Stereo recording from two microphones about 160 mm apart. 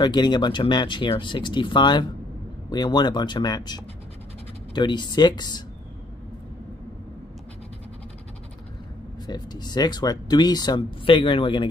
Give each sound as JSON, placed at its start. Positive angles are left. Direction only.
{"t": 0.0, "sound": "speech", "side_deg": 25}
{"t": 9.2, "sound": "speech", "side_deg": 25}